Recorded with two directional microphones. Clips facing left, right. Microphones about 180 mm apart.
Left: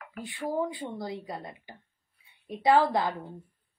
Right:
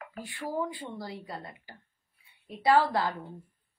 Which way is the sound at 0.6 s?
20° left (ahead or behind).